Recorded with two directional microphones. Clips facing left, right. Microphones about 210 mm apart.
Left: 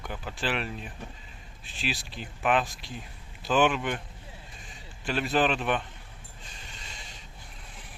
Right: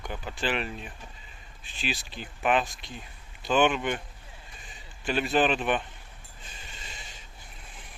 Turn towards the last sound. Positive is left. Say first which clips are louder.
# even
turn(degrees=-5)  # may be behind; listen again after turning